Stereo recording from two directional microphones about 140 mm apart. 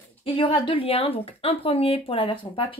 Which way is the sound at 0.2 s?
40° left (ahead or behind).